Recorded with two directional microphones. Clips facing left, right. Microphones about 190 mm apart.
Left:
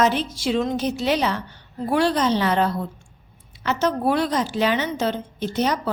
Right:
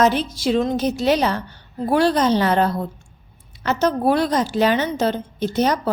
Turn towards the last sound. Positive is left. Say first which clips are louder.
# right 3 dB
turn(degrees=-40)  # may be behind; listen again after turning